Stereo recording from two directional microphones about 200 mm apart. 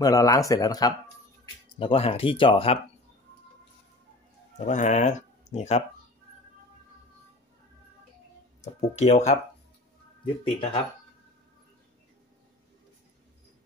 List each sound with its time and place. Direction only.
0.0 s speech: 20° left (ahead or behind)
4.6 s speech: 35° left (ahead or behind)
8.9 s speech: 35° left (ahead or behind)